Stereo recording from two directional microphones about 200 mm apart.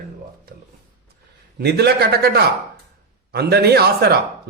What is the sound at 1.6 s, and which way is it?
A man's voice, 55° right (ahead or behind).